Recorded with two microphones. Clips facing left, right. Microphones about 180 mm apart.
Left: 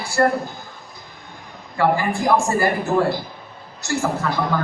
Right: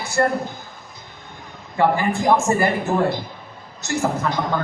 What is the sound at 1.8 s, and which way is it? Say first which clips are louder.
Speech: right 1 dB; 20° right (ahead or behind).